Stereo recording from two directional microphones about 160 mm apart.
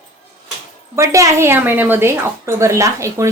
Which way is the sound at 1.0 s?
20° right (ahead or behind).